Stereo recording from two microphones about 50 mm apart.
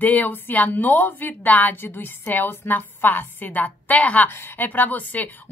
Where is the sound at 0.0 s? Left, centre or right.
Left.